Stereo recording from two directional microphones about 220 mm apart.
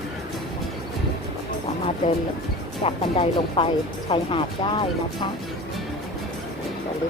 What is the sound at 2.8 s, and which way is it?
Speech, 25° left (ahead or behind).